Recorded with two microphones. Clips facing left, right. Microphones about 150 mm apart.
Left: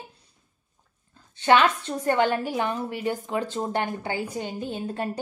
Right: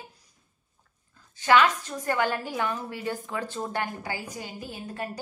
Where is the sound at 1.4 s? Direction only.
25° left (ahead or behind).